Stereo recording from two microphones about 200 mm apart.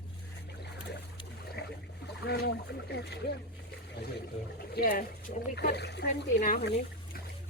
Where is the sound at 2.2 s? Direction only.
55° left (ahead or behind).